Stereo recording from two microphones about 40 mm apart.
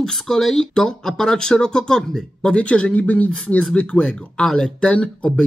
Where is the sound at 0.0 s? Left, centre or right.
Centre.